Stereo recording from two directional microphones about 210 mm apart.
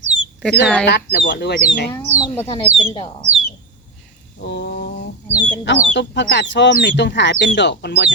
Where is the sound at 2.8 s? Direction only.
25° left (ahead or behind).